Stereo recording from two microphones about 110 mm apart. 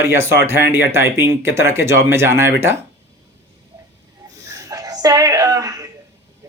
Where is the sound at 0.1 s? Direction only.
20° right (ahead or behind).